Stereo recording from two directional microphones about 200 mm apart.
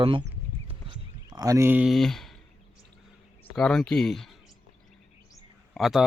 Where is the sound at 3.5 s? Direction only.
5° left (ahead or behind).